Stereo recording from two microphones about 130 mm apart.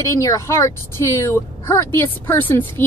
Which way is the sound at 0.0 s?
25° left (ahead or behind).